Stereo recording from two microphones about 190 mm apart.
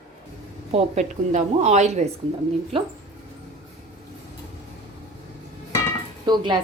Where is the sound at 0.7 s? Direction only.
35° right (ahead or behind).